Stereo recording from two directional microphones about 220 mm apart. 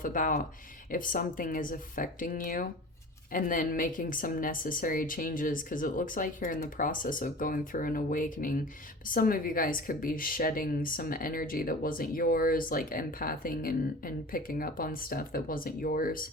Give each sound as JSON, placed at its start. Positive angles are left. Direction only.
{"t": 0.0, "sound": "a woman's voice", "side_deg": 40}